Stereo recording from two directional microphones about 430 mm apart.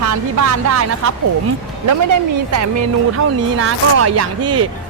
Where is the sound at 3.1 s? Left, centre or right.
Right.